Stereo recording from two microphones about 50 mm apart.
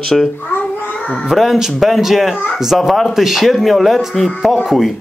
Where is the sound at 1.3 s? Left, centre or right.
Centre.